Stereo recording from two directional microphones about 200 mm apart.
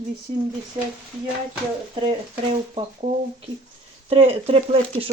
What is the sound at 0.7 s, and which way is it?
Speech, 25° right (ahead or behind).